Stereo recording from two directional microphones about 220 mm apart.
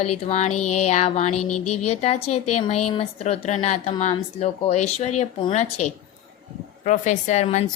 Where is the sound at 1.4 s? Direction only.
90° left.